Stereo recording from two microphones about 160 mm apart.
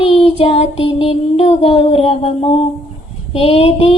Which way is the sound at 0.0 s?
35° left (ahead or behind).